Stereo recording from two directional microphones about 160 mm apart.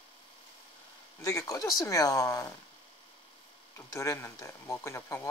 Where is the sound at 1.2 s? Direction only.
20° left (ahead or behind).